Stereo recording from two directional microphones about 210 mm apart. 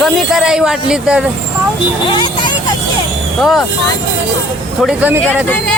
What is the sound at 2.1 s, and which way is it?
Speech, 20° left (ahead or behind).